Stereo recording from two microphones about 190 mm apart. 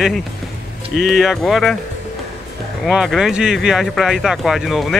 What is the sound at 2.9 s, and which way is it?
Speech, centre (ahead or behind).